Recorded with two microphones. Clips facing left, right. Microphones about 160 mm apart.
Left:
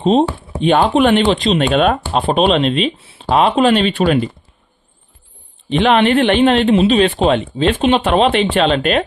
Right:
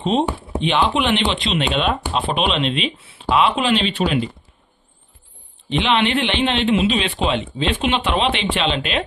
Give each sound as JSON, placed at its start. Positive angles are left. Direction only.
{"t": 0.0, "sound": "speech", "side_deg": 40}
{"t": 3.0, "sound": "a sound", "side_deg": 30}
{"t": 3.2, "sound": "speech", "side_deg": 40}
{"t": 5.7, "sound": "speech", "side_deg": 45}